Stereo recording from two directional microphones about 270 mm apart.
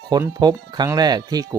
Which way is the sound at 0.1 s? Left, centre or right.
Centre.